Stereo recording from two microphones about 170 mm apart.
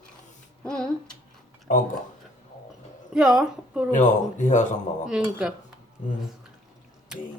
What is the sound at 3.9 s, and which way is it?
Speech, 45° left (ahead or behind).